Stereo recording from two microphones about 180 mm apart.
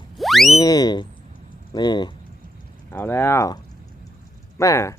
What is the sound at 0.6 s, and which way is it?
Boing, 20° left (ahead or behind).